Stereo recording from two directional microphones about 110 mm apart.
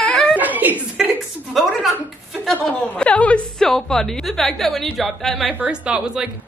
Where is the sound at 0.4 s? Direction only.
15° right (ahead or behind).